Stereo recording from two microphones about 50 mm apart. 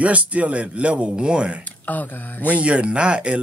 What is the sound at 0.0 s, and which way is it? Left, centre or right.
Speech, right.